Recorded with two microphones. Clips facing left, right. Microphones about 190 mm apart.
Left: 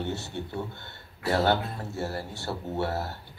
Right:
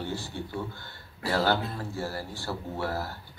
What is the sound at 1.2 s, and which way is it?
A man's voice, 25° left (ahead or behind).